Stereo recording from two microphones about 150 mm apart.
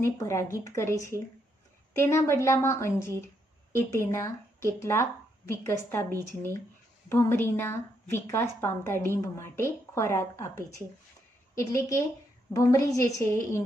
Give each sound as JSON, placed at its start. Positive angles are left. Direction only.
{"t": 0.0, "sound": "a woman's voice", "side_deg": 20}